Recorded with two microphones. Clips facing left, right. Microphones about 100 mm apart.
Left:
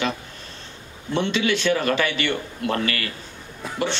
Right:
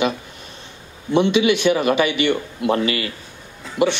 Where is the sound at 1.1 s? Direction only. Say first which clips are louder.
Right 6 dB; 15° right (ahead or behind).